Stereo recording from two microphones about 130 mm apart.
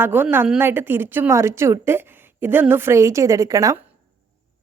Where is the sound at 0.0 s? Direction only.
15° right (ahead or behind).